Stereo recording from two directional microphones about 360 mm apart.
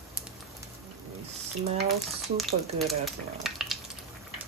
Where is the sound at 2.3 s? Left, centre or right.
Centre.